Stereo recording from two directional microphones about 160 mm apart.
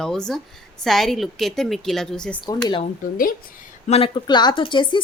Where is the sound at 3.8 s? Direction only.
40° left (ahead or behind).